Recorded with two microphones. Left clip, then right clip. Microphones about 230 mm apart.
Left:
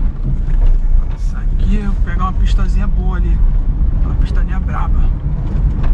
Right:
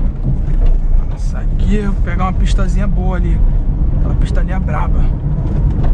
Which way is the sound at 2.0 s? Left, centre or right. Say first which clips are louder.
Right 2 dB; right.